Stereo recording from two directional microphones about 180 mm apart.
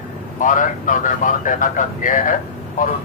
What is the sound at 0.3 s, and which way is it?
Speech, 45° left (ahead or behind).